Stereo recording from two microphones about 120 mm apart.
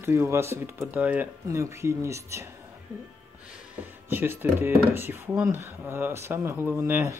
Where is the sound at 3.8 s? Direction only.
15° right (ahead or behind).